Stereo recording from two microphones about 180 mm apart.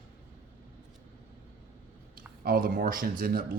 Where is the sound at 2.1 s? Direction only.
55° right (ahead or behind).